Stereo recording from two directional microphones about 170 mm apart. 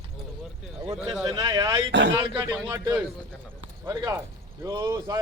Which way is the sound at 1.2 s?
20° right (ahead or behind).